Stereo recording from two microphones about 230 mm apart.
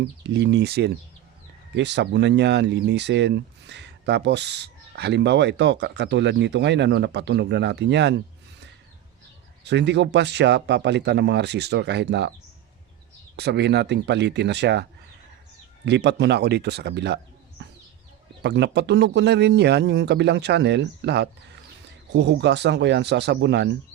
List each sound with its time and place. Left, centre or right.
0.0 s speech: right
9.6 s speech: right
13.3 s speech: right
15.9 s speech: right
17.6 s a sound: right
18.4 s speech: right